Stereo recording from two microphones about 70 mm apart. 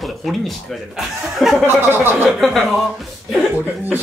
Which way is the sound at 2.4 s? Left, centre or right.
Centre.